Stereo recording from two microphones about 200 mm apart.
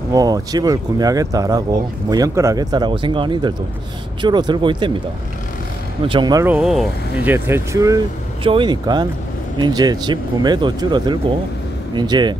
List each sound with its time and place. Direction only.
0.1 s speech: 20° right (ahead or behind)
6.0 s speech: 20° right (ahead or behind)
6.5 s speech: centre (ahead or behind)
7.3 s speech: 10° right (ahead or behind)